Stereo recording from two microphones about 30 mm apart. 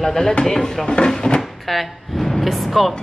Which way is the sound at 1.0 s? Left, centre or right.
Left.